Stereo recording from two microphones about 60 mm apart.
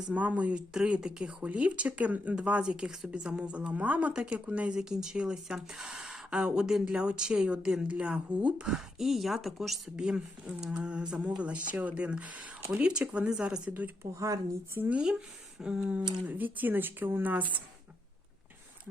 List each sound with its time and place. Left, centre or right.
0.1 s speech: right
8.7 s speech: centre
9.9 s speech: centre
13.7 s speech: right